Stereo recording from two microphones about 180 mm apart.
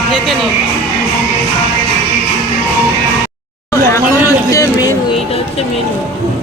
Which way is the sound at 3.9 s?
15° left (ahead or behind).